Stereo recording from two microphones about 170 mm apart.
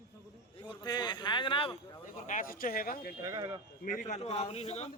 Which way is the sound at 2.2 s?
50° left (ahead or behind).